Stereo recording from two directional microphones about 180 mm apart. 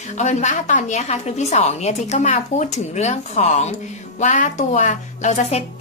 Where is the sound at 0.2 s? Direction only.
40° left (ahead or behind).